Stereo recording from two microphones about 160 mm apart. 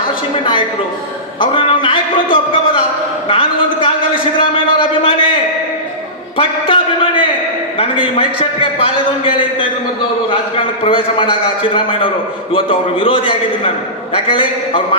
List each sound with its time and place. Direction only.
1.4 s a man's voice: 30° left (ahead or behind)
6.3 s a sound: 35° left (ahead or behind)
7.8 s a man's voice: 35° left (ahead or behind)